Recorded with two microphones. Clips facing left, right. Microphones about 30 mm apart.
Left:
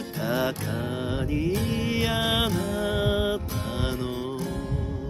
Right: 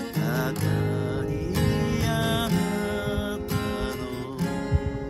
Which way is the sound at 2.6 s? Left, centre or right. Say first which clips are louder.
Right 1 dB; right.